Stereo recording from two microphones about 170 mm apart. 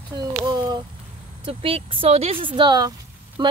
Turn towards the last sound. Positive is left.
turn(degrees=-25)  # may be behind; listen again after turning